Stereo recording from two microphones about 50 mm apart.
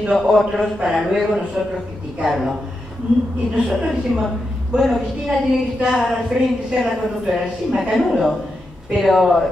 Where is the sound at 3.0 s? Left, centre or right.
Right.